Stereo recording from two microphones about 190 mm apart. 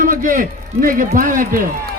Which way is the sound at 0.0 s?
45° right (ahead or behind).